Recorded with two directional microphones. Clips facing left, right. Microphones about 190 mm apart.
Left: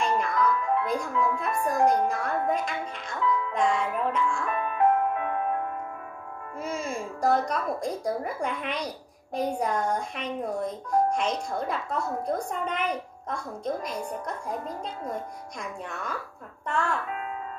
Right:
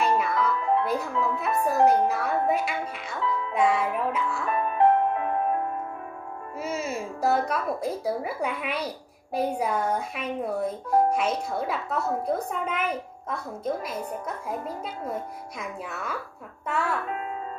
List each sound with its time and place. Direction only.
0.0 s music: 5° right (ahead or behind)
2.0 s speech: 5° right (ahead or behind)
4.7 s music: 30° right (ahead or behind)
6.6 s a woman's voice: 5° right (ahead or behind)